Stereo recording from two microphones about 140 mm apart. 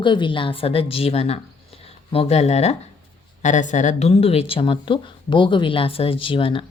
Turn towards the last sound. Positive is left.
turn(degrees=40)  # may be behind; listen again after turning